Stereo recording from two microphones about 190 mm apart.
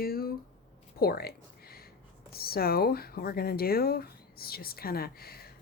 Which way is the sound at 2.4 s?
55° left (ahead or behind).